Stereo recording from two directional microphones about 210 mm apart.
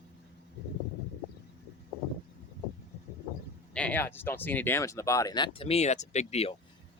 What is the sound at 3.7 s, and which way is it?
Speech, 5° left (ahead or behind).